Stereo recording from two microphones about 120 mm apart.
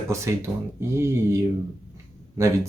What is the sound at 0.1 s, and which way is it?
Speech, 25° right (ahead or behind).